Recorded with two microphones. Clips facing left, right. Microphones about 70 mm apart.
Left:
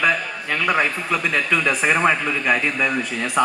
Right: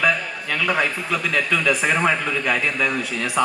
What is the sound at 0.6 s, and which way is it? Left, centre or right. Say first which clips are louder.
Speech: left 1 dB; left.